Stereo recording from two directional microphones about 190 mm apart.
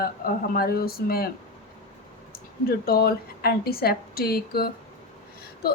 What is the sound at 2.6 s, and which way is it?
A woman's voice, 55° left (ahead or behind).